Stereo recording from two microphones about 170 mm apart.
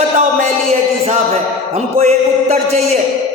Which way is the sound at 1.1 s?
40° right (ahead or behind).